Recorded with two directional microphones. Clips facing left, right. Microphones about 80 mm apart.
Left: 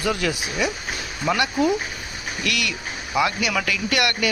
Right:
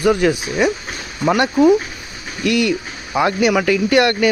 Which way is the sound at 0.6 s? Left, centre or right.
Right.